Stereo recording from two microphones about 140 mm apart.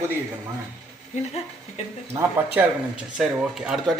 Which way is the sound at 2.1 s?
10° right (ahead or behind).